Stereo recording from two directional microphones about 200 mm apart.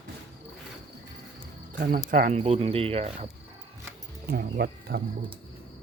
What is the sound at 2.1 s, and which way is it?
Speech, 40° right (ahead or behind).